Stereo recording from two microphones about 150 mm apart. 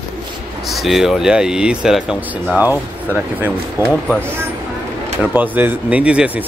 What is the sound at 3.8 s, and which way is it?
Speech, 15° right (ahead or behind).